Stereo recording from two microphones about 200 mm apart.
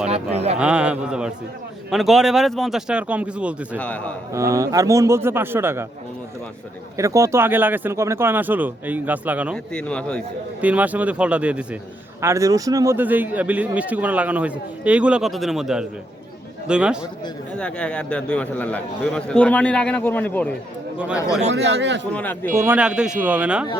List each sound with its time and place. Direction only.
0.1 s speech: 30° right (ahead or behind)
0.6 s a man's voice: 5° right (ahead or behind)
3.8 s a man's voice: 5° left (ahead or behind)
4.3 s speech: 15° right (ahead or behind)
6.9 s speech: 15° right (ahead or behind)
9.7 s a man's voice: 5° left (ahead or behind)
10.6 s a man's voice: 5° right (ahead or behind); by 20.5 s 10° left (ahead or behind)
21.5 s speech: 60° right (ahead or behind)
22.1 s a man's voice: 10° left (ahead or behind)
22.5 s speech: 10° right (ahead or behind)